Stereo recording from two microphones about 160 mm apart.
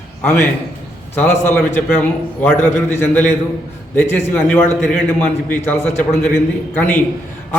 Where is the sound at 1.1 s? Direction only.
10° left (ahead or behind).